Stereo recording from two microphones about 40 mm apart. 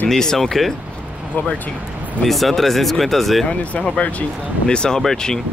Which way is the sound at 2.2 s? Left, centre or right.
Centre.